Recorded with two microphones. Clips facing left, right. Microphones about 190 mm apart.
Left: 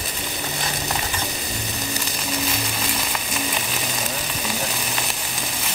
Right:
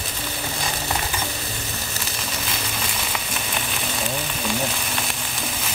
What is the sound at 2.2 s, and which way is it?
Frying, centre (ahead or behind).